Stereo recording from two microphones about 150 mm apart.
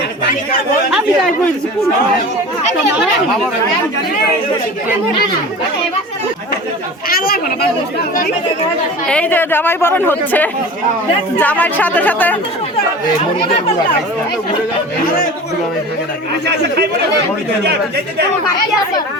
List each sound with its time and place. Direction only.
7.1 s speech: 80° left
9.0 s speech: 10° left (ahead or behind)